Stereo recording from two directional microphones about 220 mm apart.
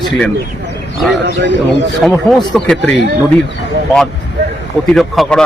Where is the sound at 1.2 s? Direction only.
55° right (ahead or behind).